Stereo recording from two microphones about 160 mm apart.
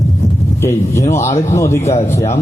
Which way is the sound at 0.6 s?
15° left (ahead or behind).